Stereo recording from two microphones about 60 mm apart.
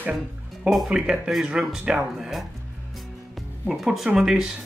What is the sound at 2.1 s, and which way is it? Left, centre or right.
Speech, centre.